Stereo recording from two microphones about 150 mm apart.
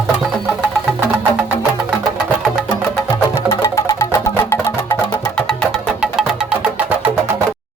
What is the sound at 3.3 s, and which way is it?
Music, 20° left (ahead or behind).